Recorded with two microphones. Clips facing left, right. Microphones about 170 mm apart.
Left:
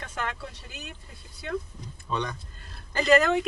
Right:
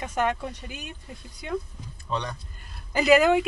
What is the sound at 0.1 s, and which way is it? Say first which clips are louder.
Speech: right 9 dB; 15° right (ahead or behind).